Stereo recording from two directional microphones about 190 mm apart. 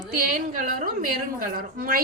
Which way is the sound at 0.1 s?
45° right (ahead or behind).